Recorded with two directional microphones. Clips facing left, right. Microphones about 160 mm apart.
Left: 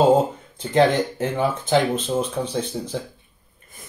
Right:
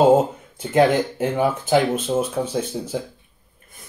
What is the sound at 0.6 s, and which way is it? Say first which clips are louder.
Speech: right 1 dB; 10° right (ahead or behind).